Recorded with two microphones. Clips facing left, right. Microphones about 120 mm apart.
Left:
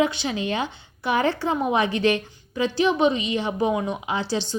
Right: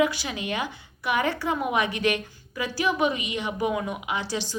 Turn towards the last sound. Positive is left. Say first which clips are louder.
# left 4 dB
turn(degrees=30)  # may be behind; listen again after turning